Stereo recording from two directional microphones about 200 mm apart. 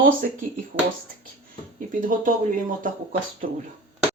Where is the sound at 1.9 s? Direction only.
40° right (ahead or behind).